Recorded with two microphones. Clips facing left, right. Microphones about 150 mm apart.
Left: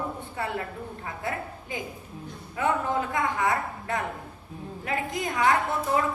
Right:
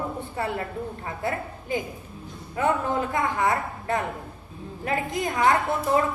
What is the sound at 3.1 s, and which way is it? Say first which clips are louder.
A woman's voice: right 2 dB; 35° right (ahead or behind).